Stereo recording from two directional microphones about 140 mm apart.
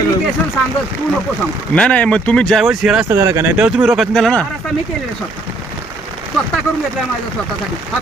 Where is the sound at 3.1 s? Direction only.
20° right (ahead or behind).